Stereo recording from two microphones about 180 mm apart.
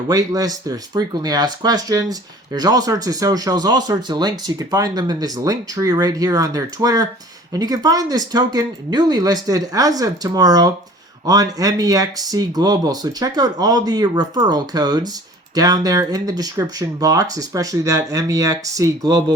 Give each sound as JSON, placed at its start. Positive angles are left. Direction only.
{"t": 0.1, "sound": "speech", "side_deg": -20}